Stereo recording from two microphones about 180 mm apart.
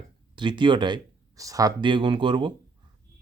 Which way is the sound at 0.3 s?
25° right (ahead or behind).